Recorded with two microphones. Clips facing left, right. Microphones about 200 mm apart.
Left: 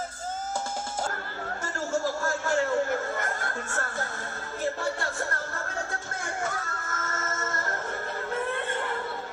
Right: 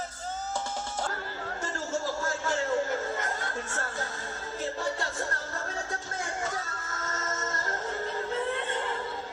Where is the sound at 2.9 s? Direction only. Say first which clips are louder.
Left 2 dB; 20° right (ahead or behind).